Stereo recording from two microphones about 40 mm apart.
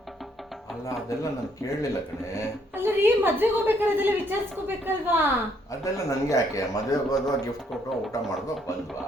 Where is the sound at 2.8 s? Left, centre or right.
Right.